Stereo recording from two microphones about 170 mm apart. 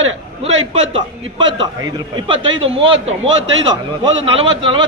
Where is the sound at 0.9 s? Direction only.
30° right (ahead or behind).